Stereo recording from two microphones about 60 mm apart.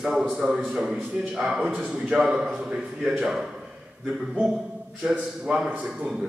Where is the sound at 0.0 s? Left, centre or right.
Centre.